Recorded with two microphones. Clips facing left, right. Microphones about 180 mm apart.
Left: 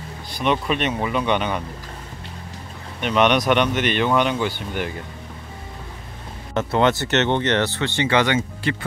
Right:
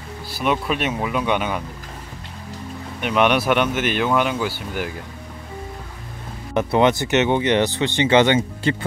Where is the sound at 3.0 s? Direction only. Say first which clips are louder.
Even; 5° right (ahead or behind).